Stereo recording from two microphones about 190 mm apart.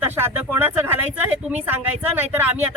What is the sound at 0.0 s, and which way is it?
Speech, 10° right (ahead or behind).